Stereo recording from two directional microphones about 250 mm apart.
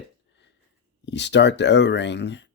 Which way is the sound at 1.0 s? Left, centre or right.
Left.